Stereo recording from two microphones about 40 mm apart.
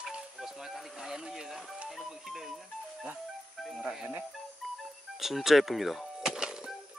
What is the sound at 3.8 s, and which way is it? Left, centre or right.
Music, centre.